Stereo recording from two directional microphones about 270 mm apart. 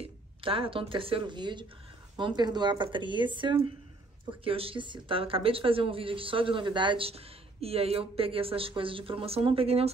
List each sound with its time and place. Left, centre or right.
0.0 s speech: centre